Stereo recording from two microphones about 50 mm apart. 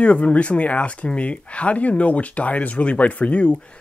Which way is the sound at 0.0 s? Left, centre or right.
Left.